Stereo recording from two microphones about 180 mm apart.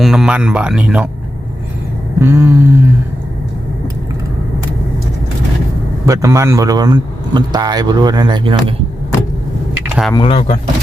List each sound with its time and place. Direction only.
0.0 s speech: centre (ahead or behind)
2.2 s a sound: 15° right (ahead or behind)
6.1 s a man's voice: 15° right (ahead or behind)
10.2 s speech: 30° left (ahead or behind)